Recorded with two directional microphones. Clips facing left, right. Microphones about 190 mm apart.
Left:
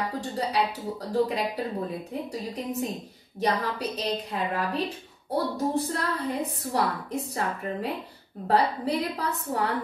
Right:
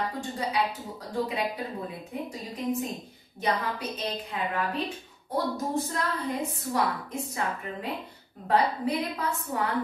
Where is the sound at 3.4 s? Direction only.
35° left (ahead or behind).